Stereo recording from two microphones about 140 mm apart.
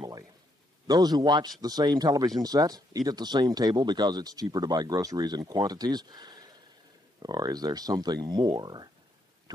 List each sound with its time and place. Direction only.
0.8 s speech: 30° right (ahead or behind)